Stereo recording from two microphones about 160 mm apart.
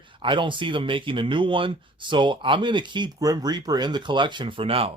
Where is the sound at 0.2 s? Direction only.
30° right (ahead or behind).